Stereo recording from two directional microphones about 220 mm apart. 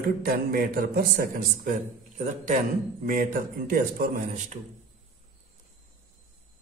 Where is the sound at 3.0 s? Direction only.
40° right (ahead or behind).